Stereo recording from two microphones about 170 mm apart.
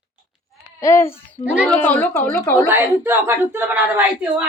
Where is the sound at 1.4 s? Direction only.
10° right (ahead or behind).